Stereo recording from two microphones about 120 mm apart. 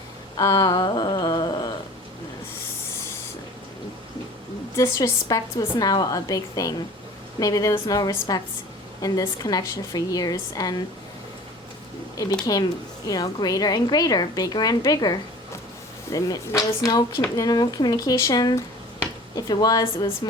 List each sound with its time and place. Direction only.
0.3 s a sound: 30° left (ahead or behind)
4.8 s a woman's voice: 25° left (ahead or behind)
12.1 s a woman's voice: 30° left (ahead or behind)